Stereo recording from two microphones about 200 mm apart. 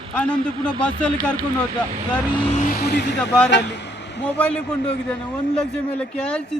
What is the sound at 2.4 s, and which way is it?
Vehicle, 35° left (ahead or behind).